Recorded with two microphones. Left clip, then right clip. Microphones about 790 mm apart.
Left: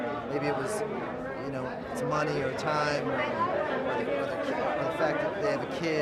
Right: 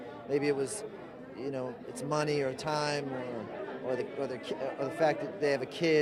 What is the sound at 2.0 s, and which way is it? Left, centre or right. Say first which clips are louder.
A man's voice: left 2 dB; left.